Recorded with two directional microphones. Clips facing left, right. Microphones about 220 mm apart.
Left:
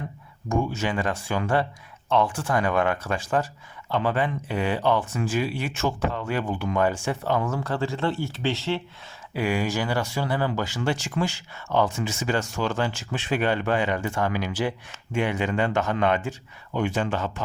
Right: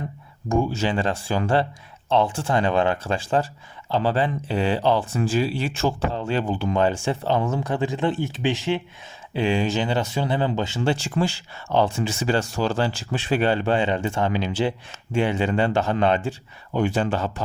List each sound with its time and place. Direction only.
0.4 s speech: 30° right (ahead or behind)